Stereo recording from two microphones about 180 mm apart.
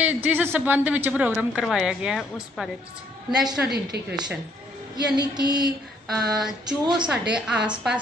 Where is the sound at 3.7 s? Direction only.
65° right (ahead or behind).